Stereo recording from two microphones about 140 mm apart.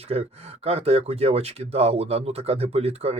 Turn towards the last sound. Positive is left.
turn(degrees=-45)  # may be behind; listen again after turning